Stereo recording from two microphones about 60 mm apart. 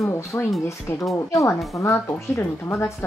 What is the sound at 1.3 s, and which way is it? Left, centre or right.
Speech, left.